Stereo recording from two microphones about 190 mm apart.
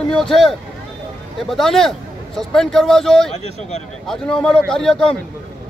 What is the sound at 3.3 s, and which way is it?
Speech, 35° left (ahead or behind).